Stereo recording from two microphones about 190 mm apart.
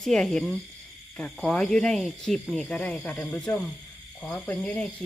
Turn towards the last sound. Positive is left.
turn(degrees=5)  # may be behind; listen again after turning